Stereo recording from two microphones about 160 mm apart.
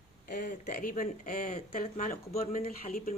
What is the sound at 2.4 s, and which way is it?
Speech, 65° left (ahead or behind).